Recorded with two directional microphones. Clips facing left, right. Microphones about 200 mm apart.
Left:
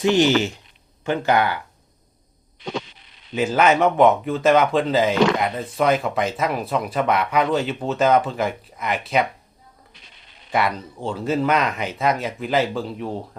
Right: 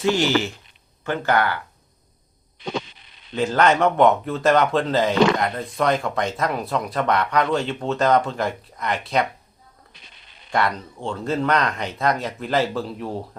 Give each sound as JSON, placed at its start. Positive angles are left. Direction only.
{"t": 0.0, "sound": "speech", "side_deg": 20}
{"t": 3.3, "sound": "speech", "side_deg": 5}
{"t": 10.5, "sound": "speech", "side_deg": 5}